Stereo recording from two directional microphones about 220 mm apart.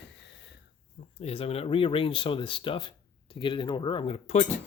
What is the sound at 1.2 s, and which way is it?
Speech, 25° left (ahead or behind).